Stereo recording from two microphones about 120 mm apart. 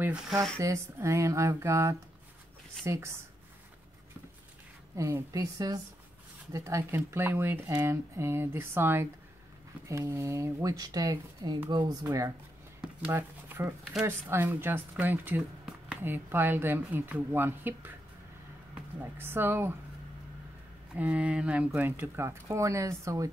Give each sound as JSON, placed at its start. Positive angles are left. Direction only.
{"t": 0.0, "sound": "speech", "side_deg": -5}
{"t": 0.6, "sound": "speech", "side_deg": -25}
{"t": 4.9, "sound": "speech", "side_deg": -25}
{"t": 12.8, "sound": "a sound", "side_deg": -15}
{"t": 14.0, "sound": "speech", "side_deg": -20}
{"t": 19.1, "sound": "speech", "side_deg": -20}
{"t": 20.9, "sound": "speech", "side_deg": -10}